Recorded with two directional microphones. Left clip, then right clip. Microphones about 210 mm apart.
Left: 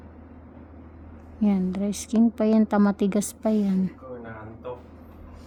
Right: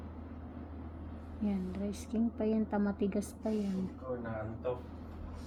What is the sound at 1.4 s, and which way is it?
A woman's voice, 60° left (ahead or behind).